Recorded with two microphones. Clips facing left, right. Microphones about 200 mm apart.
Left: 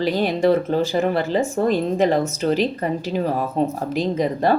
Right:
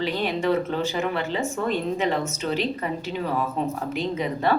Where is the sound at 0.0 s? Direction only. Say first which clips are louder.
Left 6 dB; 40° left (ahead or behind).